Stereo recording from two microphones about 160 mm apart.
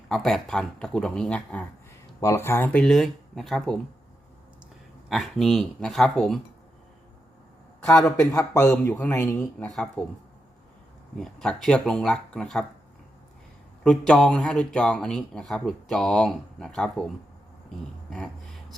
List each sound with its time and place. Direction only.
0.1 s speech: centre (ahead or behind)
5.0 s speech: centre (ahead or behind)
7.9 s speech: 5° left (ahead or behind)
8.4 s speech: 20° left (ahead or behind)
9.6 s speech: 5° left (ahead or behind)
11.2 s speech: 5° left (ahead or behind)
13.8 s speech: 5° left (ahead or behind)